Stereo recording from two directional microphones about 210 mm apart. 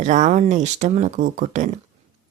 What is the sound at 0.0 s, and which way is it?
Speech, 35° right (ahead or behind).